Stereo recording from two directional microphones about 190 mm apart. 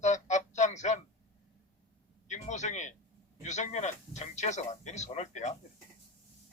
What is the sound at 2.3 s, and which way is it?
Speech, 40° left (ahead or behind).